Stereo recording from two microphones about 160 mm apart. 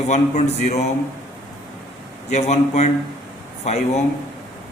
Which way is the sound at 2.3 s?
45° left (ahead or behind).